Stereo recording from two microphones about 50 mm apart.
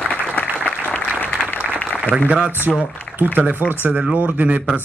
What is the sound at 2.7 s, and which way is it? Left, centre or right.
Speech, centre.